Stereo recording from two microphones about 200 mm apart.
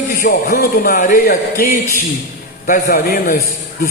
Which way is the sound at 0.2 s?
45° left (ahead or behind).